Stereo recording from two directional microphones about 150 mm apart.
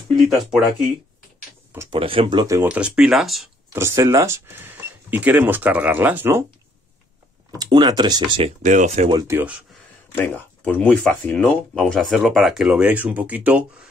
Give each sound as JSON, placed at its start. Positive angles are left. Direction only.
{"t": 0.1, "sound": "speech", "side_deg": 0}
{"t": 1.9, "sound": "speech", "side_deg": -35}
{"t": 2.7, "sound": "speech", "side_deg": -5}
{"t": 3.7, "sound": "speech", "side_deg": -20}
{"t": 7.5, "sound": "speech", "side_deg": -30}
{"t": 8.6, "sound": "speech", "side_deg": -55}
{"t": 9.3, "sound": "speech", "side_deg": -10}
{"t": 10.1, "sound": "speech", "side_deg": 10}